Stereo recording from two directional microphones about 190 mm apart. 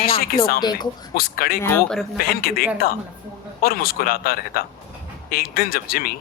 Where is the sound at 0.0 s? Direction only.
50° left (ahead or behind).